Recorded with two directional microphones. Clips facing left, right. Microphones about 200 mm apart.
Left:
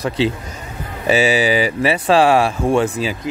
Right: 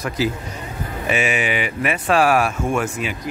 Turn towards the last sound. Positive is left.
turn(degrees=35)  # may be behind; listen again after turning